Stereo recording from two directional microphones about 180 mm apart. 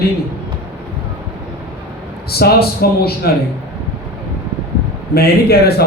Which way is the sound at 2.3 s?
60° left (ahead or behind).